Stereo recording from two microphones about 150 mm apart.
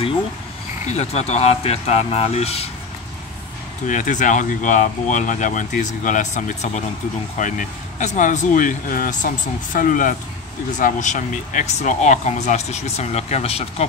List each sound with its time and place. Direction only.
0.8 s speech: 45° left (ahead or behind)
3.8 s speech: 60° left (ahead or behind); by 13.8 s 45° left (ahead or behind)